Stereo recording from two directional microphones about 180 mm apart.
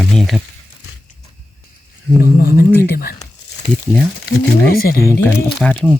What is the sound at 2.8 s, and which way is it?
Speech, 55° left (ahead or behind).